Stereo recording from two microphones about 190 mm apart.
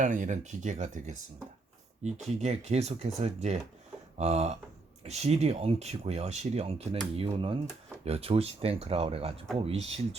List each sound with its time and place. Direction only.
0.0 s speech: 40° right (ahead or behind)